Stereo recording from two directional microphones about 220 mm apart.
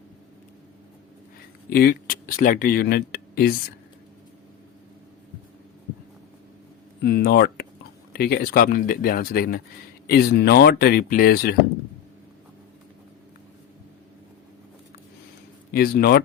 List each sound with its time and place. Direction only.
1.7 s speech: 40° left (ahead or behind)
7.0 s speech: 45° left (ahead or behind)
15.7 s speech: 40° left (ahead or behind)